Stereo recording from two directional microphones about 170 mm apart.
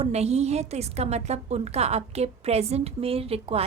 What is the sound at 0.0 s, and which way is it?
A woman's voice, 40° right (ahead or behind).